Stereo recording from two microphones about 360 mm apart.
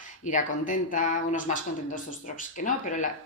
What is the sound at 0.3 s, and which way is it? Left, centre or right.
Speech, left.